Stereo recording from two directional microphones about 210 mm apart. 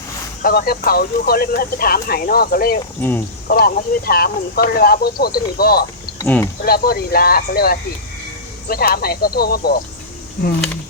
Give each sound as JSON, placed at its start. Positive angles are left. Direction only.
{"t": 0.4, "sound": "speech", "side_deg": 45}
{"t": 6.1, "sound": "speech", "side_deg": 10}
{"t": 6.7, "sound": "speech", "side_deg": 45}